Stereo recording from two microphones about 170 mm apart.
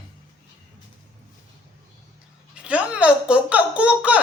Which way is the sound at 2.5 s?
5° right (ahead or behind).